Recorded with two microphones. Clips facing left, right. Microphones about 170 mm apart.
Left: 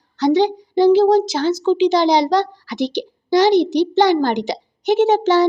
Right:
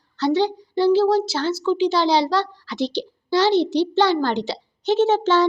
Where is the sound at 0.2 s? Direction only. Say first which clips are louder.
Left 4 dB; 15° left (ahead or behind).